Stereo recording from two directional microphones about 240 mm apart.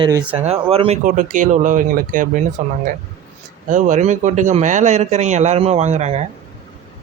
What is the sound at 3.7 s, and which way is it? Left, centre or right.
Speech, right.